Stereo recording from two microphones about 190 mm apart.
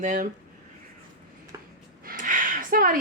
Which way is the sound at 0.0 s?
40° right (ahead or behind).